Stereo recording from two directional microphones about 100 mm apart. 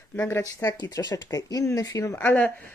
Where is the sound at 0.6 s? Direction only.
40° left (ahead or behind).